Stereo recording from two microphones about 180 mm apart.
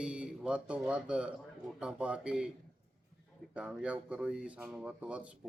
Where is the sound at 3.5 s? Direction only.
5° right (ahead or behind).